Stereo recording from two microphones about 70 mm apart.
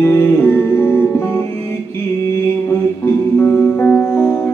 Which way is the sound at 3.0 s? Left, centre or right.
Left.